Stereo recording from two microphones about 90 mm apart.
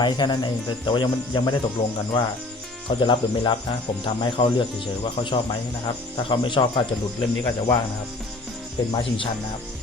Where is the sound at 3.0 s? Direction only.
65° left (ahead or behind).